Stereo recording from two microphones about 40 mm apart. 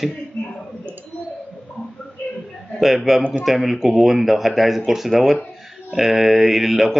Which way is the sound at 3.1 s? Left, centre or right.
Centre.